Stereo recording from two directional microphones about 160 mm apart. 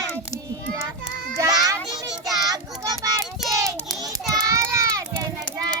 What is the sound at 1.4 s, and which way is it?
Children playing, 20° right (ahead or behind).